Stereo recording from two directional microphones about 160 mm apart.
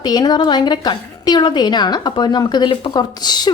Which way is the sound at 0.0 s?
25° left (ahead or behind).